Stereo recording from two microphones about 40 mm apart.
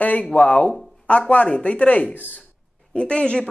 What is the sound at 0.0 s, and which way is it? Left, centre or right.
Speech, left.